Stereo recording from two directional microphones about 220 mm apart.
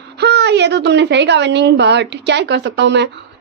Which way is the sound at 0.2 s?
50° right (ahead or behind).